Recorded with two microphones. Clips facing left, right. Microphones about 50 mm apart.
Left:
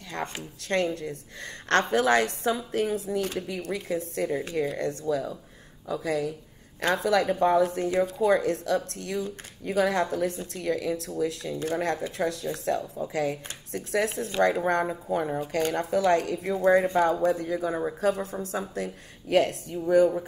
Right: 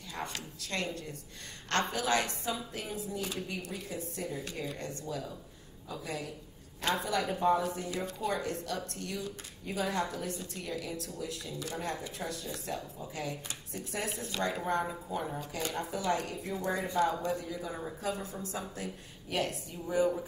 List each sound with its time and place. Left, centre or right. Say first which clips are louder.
0.1 s a woman's voice: left 6 dB; left
9.7 s a woman's voice: left 9 dB; left
10.0 s a woman's voice: left 9 dB; left
10.5 s speech: left 10 dB; left
14.6 s speech: left 7 dB; left
16.6 s a woman's voice: left 12 dB; left
17.0 s speech: left 7 dB; left
18.1 s a woman's voice: left 7 dB; left